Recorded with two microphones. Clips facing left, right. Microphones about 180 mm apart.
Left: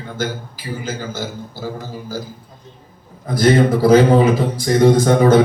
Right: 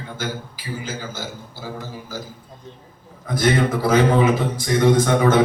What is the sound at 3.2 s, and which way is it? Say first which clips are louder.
A man's voice: left 5 dB; 35° left (ahead or behind).